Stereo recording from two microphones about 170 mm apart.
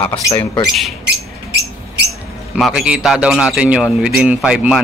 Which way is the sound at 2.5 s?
5° right (ahead or behind).